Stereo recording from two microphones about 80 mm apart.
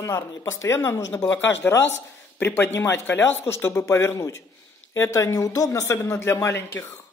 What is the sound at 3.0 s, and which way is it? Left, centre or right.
A woman's voice, left.